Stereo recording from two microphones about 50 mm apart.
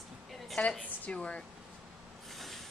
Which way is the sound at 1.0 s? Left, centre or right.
Left.